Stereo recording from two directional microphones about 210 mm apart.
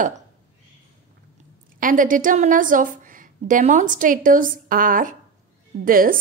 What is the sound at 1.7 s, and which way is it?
A woman's voice, 40° right (ahead or behind).